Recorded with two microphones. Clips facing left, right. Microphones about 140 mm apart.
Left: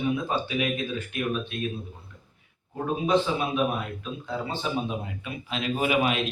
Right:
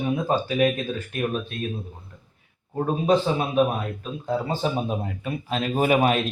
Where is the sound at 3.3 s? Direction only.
40° right (ahead or behind).